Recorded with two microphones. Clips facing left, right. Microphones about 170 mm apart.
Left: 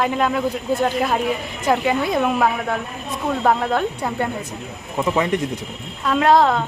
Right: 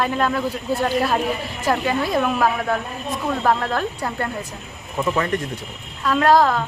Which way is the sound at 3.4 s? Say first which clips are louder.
Left 3 dB; 20° left (ahead or behind).